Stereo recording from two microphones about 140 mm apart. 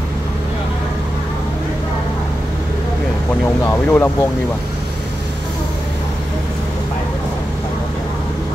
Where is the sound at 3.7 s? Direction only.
15° left (ahead or behind).